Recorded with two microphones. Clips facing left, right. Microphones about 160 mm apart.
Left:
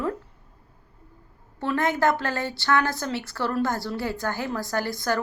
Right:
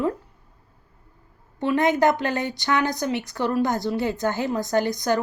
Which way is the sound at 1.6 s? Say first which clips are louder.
Right 4 dB; 20° right (ahead or behind).